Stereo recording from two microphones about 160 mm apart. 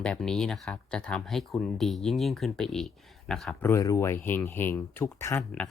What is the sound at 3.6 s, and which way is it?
Speech, 20° left (ahead or behind).